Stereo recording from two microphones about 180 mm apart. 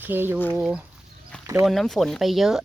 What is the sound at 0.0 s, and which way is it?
Speech, 10° right (ahead or behind).